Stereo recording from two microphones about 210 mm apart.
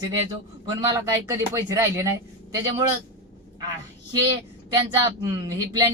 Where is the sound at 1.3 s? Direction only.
15° right (ahead or behind).